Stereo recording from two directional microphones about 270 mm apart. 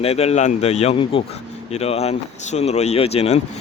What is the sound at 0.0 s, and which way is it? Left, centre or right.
Speech, left.